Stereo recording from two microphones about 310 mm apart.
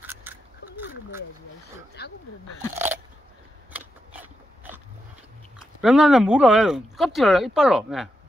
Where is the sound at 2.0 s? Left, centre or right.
Left.